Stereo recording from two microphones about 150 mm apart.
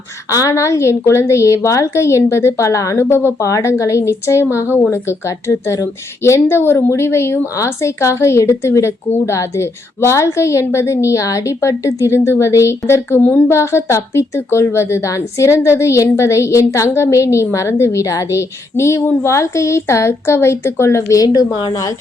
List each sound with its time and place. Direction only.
0.3 s a woman's voice: 20° left (ahead or behind)